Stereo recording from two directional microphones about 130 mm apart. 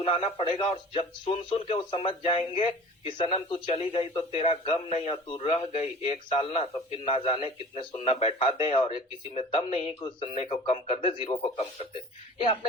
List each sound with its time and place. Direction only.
0.0 s a man's voice: 45° left (ahead or behind)